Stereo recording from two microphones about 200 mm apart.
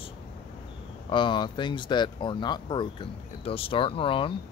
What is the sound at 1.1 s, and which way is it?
Speech, 25° left (ahead or behind).